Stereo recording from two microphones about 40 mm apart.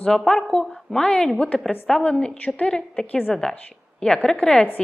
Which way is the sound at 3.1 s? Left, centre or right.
Left.